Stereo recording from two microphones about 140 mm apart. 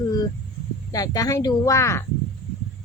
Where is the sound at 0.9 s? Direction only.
25° left (ahead or behind).